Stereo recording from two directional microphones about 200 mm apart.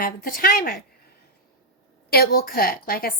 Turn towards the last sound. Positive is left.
turn(degrees=50)  # may be behind; listen again after turning